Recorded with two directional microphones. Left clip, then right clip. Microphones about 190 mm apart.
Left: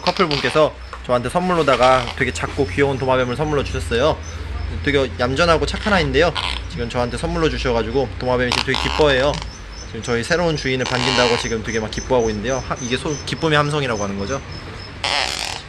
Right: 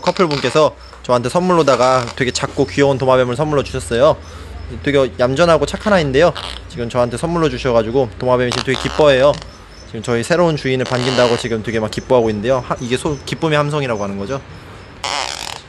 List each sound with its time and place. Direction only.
0.4 s speech: 45° right (ahead or behind); by 6.3 s 60° right (ahead or behind)
6.3 s speech: 15° right (ahead or behind)
6.7 s speech: 60° right (ahead or behind)
15.0 s fart: 15° right (ahead or behind)